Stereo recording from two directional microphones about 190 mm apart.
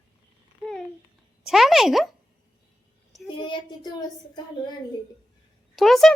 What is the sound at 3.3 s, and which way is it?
Speech, 25° left (ahead or behind).